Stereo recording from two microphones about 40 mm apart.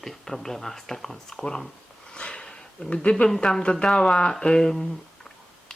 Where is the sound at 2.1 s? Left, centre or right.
Left.